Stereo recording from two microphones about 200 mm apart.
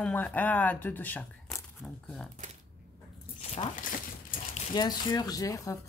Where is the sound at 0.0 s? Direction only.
5° left (ahead or behind).